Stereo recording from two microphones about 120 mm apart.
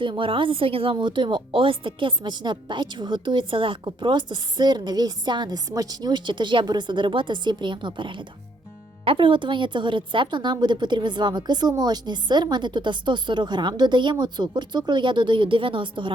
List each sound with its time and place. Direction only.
0.0 s a woman's voice: 45° right (ahead or behind)